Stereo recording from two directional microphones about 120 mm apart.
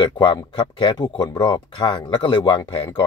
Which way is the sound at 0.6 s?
40° left (ahead or behind).